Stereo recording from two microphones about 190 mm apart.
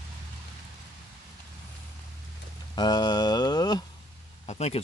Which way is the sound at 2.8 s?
20° left (ahead or behind).